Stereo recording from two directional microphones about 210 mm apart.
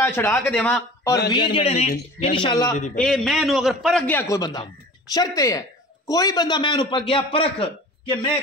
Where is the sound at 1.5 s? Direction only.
25° left (ahead or behind).